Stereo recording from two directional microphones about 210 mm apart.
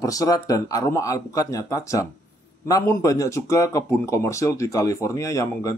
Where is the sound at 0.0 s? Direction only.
15° left (ahead or behind).